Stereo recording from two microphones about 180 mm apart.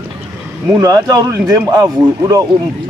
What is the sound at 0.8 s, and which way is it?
Speech, 20° right (ahead or behind).